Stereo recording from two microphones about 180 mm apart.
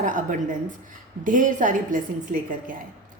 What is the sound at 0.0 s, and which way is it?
A woman's voice, 45° right (ahead or behind).